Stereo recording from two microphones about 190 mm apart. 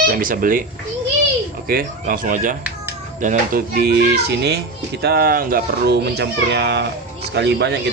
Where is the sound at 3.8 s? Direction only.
60° right (ahead or behind).